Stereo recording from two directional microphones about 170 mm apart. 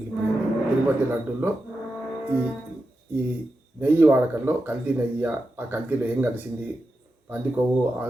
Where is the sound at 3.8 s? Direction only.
10° right (ahead or behind).